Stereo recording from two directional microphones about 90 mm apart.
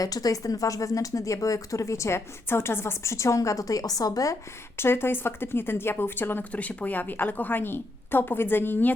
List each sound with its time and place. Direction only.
0.0 s speech: 45° left (ahead or behind)
4.8 s speech: 25° left (ahead or behind)